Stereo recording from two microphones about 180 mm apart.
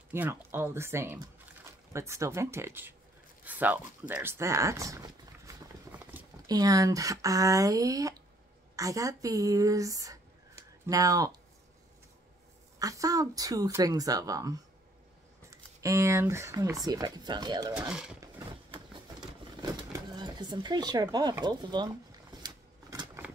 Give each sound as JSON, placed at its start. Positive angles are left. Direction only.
{"t": 0.1, "sound": "speech", "side_deg": -15}
{"t": 4.1, "sound": "a sound", "side_deg": -15}
{"t": 6.4, "sound": "a woman's voice", "side_deg": -20}
{"t": 12.7, "sound": "a woman's voice", "side_deg": -20}
{"t": 17.7, "sound": "speech", "side_deg": -5}
{"t": 19.6, "sound": "speech", "side_deg": -20}
{"t": 22.4, "sound": "typewriter", "side_deg": -20}